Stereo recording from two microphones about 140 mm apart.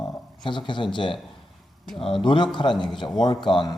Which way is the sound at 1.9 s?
5° left (ahead or behind).